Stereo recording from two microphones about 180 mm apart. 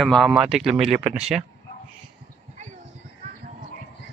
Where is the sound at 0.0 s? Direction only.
Centre (ahead or behind).